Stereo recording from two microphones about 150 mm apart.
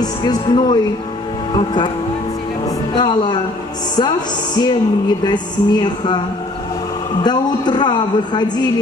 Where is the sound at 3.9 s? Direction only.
30° left (ahead or behind).